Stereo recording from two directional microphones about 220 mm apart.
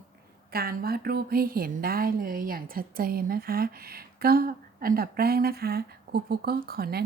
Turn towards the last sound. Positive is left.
turn(degrees=-45)  # may be behind; listen again after turning